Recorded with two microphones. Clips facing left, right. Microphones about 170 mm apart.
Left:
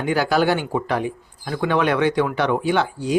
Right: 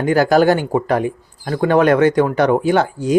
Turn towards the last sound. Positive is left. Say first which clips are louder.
# right 5 dB
turn(degrees=-45)  # may be behind; listen again after turning